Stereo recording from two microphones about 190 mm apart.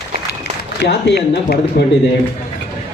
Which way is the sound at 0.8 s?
60° left (ahead or behind).